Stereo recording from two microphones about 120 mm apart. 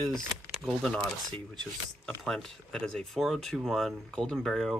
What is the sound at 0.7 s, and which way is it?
Speech, 5° left (ahead or behind).